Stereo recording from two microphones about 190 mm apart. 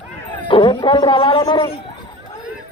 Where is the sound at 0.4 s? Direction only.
25° left (ahead or behind).